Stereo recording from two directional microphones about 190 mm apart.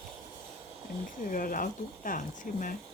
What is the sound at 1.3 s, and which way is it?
Speech, 45° left (ahead or behind).